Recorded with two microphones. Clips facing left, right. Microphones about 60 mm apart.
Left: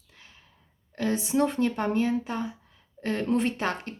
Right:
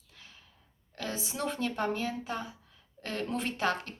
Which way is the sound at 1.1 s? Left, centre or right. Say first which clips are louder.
Left 10 dB; left.